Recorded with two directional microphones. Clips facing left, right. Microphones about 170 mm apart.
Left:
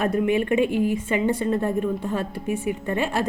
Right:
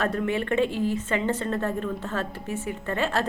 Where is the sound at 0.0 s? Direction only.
15° left (ahead or behind).